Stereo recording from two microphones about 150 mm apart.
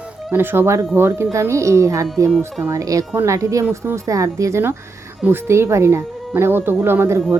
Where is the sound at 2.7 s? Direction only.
20° right (ahead or behind).